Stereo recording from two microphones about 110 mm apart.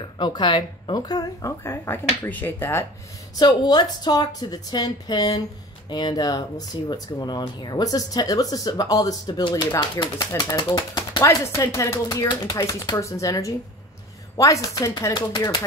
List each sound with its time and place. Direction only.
0.2 s speech: 40° left (ahead or behind)
1.6 s speech: 25° left (ahead or behind)
3.3 s speech: 40° left (ahead or behind)
11.6 s speech: 25° left (ahead or behind); by 15.6 s 40° left (ahead or behind)